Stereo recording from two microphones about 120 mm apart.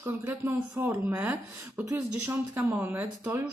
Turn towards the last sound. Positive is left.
turn(degrees=-20)  # may be behind; listen again after turning